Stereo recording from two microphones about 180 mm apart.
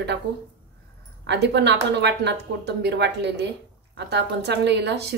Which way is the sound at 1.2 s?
70° right (ahead or behind).